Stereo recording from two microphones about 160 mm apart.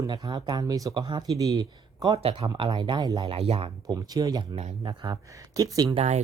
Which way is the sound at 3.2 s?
40° right (ahead or behind).